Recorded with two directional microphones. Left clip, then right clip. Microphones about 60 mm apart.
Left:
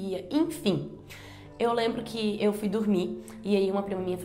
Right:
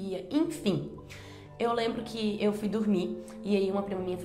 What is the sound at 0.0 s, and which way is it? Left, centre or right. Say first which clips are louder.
A woman's voice: left 2 dB; left.